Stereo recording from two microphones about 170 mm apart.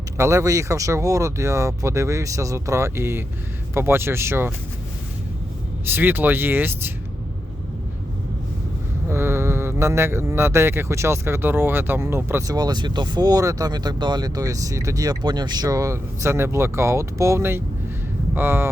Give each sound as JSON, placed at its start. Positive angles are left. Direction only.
{"t": 0.2, "sound": "speech", "side_deg": -15}
{"t": 5.8, "sound": "speech", "side_deg": -10}
{"t": 9.0, "sound": "speech", "side_deg": -15}